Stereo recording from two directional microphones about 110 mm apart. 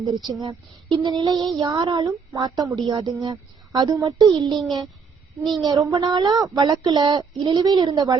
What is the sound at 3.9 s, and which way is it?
Speech, 30° right (ahead or behind).